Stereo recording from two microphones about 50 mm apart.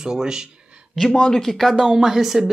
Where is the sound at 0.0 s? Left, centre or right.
Centre.